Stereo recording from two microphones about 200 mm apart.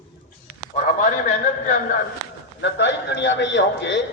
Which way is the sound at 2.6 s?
60° left (ahead or behind).